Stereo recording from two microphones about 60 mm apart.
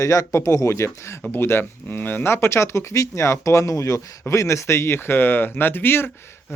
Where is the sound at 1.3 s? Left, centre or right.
Left.